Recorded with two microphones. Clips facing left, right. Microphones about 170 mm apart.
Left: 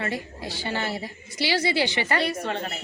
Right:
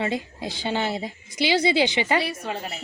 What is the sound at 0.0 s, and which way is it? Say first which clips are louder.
A woman's voice: right 3 dB; 20° right (ahead or behind).